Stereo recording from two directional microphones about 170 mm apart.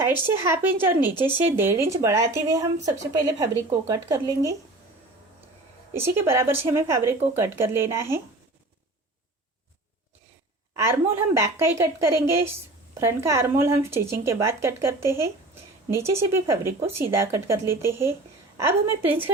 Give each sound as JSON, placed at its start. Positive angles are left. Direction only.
{"t": 0.0, "sound": "speech", "side_deg": -15}
{"t": 5.9, "sound": "speech", "side_deg": -15}
{"t": 11.3, "sound": "speech", "side_deg": -15}